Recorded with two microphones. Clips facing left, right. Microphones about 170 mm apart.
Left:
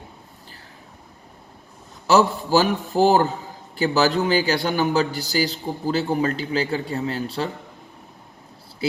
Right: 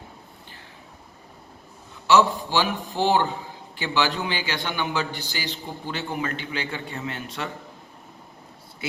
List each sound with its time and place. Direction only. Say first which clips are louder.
2.0 s a man's voice: left 2 dB; 40° left (ahead or behind)